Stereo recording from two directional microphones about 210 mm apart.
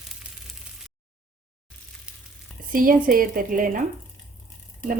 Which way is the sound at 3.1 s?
40° right (ahead or behind).